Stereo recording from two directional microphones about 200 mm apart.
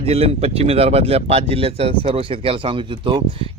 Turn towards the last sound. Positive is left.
turn(degrees=-25)  # may be behind; listen again after turning